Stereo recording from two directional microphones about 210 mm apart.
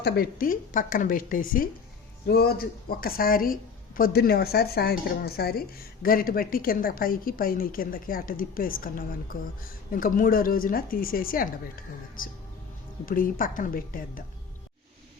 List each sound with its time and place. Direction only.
0.0 s a woman's voice: 45° left (ahead or behind)